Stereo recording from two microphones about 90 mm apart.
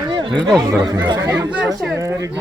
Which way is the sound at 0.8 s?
50° right (ahead or behind).